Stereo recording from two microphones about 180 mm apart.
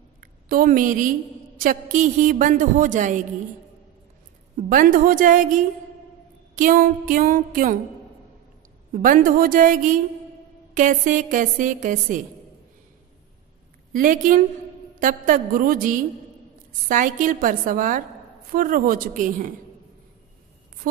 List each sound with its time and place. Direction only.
0.2 s a woman's voice: 50° right (ahead or behind)
4.6 s a woman's voice: 50° right (ahead or behind)
8.9 s a woman's voice: 50° right (ahead or behind)
13.9 s a woman's voice: 45° right (ahead or behind)